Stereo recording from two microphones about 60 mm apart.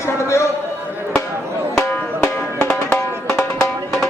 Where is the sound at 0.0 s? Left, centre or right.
Left.